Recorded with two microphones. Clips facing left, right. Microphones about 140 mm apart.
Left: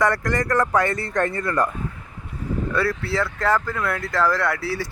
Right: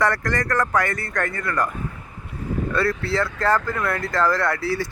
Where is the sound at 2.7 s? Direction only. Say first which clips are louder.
Right 1 dB; 10° left (ahead or behind).